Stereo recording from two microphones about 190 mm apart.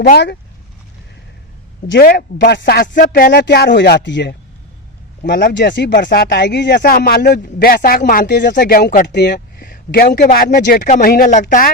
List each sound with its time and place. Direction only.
0.0 s speech: 45° left (ahead or behind)
1.9 s speech: 55° left (ahead or behind)
3.4 s speech: 60° left (ahead or behind)
10.8 s speech: 40° left (ahead or behind)